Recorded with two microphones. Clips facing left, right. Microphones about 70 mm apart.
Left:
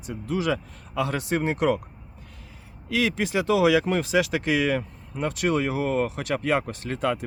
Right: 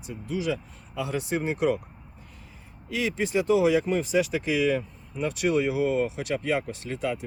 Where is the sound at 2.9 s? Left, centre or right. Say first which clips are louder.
Left 2 dB; left.